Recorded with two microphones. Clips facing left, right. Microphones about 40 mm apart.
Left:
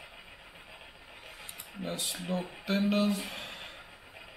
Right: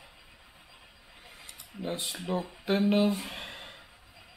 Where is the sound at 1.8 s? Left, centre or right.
Centre.